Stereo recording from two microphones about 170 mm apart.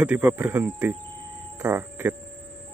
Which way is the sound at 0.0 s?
10° right (ahead or behind).